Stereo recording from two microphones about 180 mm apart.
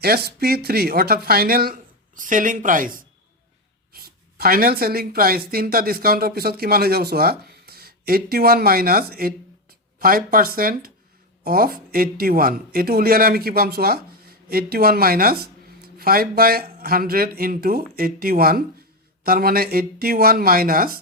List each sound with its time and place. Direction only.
0.0 s speech: 60° right (ahead or behind)